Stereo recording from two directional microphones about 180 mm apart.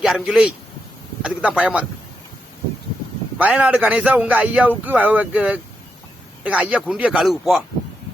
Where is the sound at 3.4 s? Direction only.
5° right (ahead or behind).